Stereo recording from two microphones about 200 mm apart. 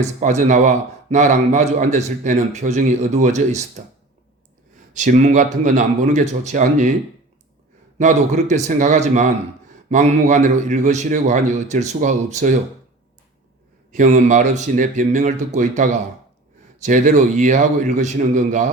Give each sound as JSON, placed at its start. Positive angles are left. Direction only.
{"t": 0.0, "sound": "a man's voice", "side_deg": -35}
{"t": 4.9, "sound": "a man's voice", "side_deg": -35}
{"t": 7.9, "sound": "a man's voice", "side_deg": -35}
{"t": 13.9, "sound": "a man's voice", "side_deg": -40}